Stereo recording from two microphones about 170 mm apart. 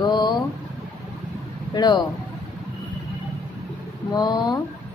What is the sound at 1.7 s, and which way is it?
Speech, 25° left (ahead or behind).